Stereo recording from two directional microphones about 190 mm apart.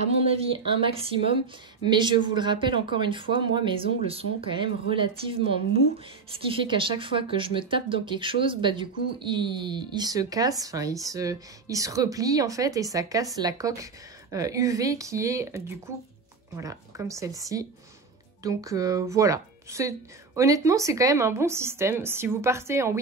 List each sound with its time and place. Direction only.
0.3 s speech: 30° right (ahead or behind); by 22.9 s 15° right (ahead or behind)